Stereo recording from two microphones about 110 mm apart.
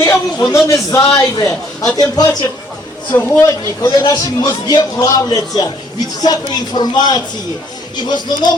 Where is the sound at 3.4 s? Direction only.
30° left (ahead or behind).